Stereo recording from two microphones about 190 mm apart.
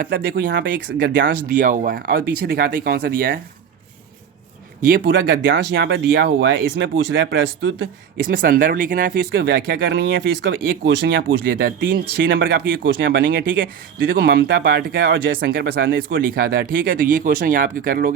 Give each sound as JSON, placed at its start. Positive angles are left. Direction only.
{"t": 0.0, "sound": "speech", "side_deg": -50}
{"t": 4.8, "sound": "speech", "side_deg": -50}
{"t": 8.3, "sound": "speech", "side_deg": -50}